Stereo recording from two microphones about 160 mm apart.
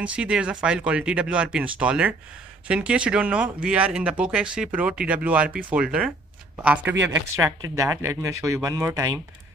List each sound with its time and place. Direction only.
0.0 s speech: 5° right (ahead or behind)